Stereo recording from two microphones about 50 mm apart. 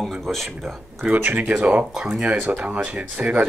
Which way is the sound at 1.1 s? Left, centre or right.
Right.